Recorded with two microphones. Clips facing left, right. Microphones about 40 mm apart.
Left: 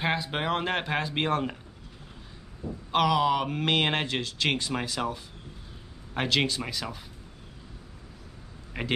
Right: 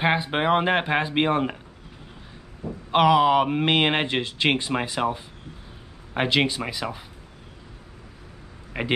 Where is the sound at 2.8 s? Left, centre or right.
Right.